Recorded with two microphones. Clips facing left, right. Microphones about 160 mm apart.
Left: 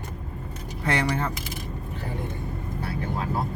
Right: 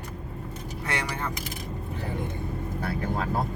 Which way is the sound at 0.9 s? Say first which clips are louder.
Left 7 dB; 30° left (ahead or behind).